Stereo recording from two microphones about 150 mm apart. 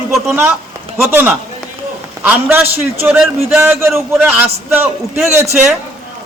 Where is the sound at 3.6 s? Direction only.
15° right (ahead or behind).